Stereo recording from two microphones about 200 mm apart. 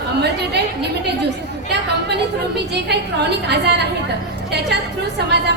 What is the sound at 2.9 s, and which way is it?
Speech, 55° right (ahead or behind).